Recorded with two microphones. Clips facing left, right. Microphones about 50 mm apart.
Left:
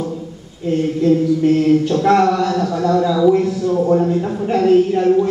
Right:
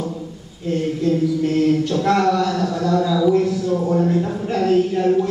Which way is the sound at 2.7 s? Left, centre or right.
Centre.